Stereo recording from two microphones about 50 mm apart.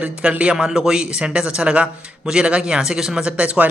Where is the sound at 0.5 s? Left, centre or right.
Centre.